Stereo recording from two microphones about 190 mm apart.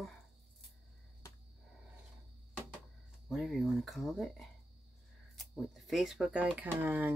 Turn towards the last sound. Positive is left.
turn(degrees=-10)  # may be behind; listen again after turning